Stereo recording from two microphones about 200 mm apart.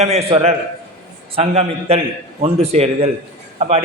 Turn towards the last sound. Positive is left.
turn(degrees=-35)  # may be behind; listen again after turning